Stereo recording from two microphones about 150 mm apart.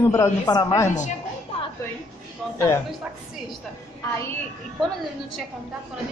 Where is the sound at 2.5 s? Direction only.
15° left (ahead or behind).